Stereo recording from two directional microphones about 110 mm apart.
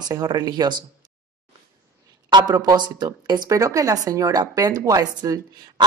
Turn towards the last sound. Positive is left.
turn(degrees=-40)  # may be behind; listen again after turning